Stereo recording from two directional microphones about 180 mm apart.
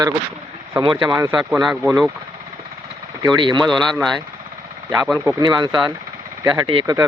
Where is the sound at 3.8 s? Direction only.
Centre (ahead or behind).